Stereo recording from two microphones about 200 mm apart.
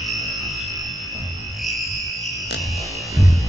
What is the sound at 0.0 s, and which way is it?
Music, centre (ahead or behind).